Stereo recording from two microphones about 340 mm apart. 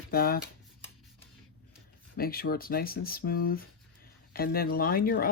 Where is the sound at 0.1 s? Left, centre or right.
Left.